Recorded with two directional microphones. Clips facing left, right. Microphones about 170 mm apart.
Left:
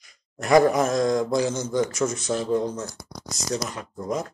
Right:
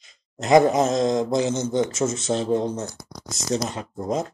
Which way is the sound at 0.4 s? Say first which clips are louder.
Right 1 dB; 20° right (ahead or behind).